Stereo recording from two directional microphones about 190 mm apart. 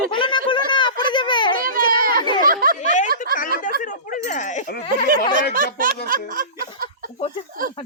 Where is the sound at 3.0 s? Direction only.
50° right (ahead or behind).